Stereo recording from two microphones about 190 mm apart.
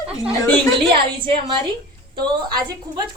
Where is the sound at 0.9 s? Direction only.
25° right (ahead or behind).